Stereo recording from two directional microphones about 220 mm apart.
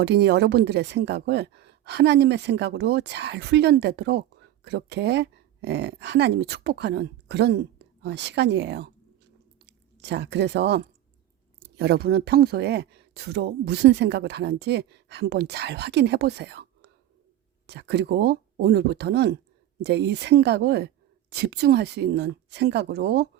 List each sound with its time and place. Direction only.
0.0 s a woman's voice: 50° right (ahead or behind)